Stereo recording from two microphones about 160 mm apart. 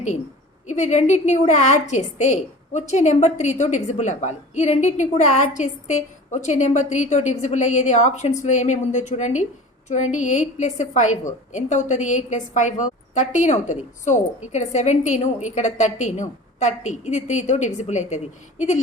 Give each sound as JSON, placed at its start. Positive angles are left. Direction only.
{"t": 0.7, "sound": "a woman's voice", "side_deg": 45}